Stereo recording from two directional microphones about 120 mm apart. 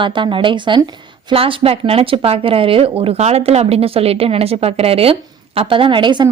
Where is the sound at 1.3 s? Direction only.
55° right (ahead or behind).